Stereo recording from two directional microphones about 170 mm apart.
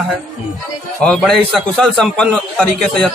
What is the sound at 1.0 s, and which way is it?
A man's voice, 5° left (ahead or behind).